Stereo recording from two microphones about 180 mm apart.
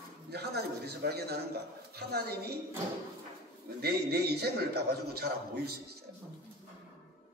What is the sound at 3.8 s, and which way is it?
A man's voice, 65° right (ahead or behind).